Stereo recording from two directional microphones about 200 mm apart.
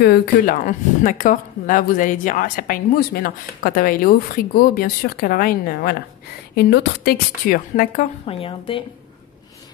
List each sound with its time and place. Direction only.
0.0 s speech: 50° left (ahead or behind)
8.3 s a woman's voice: 30° left (ahead or behind)